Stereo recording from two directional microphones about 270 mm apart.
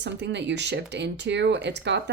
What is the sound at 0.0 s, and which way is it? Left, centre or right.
Speech, right.